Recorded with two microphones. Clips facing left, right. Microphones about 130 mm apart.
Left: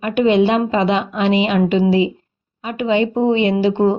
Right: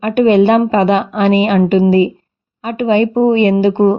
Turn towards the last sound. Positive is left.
turn(degrees=-45)  # may be behind; listen again after turning